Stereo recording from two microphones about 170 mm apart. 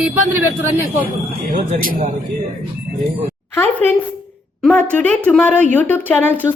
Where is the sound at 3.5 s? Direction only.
15° left (ahead or behind).